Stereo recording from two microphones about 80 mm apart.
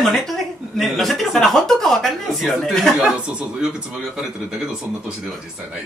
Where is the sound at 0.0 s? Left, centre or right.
Centre.